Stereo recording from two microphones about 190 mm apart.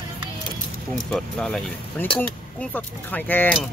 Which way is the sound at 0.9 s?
Centre (ahead or behind).